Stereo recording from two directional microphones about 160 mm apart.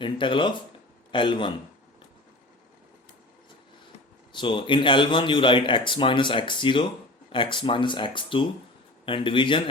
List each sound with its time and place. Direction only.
0.0 s speech: 30° left (ahead or behind)
4.3 s speech: 30° left (ahead or behind)